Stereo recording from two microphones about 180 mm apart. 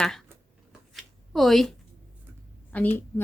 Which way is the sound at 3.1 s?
15° left (ahead or behind).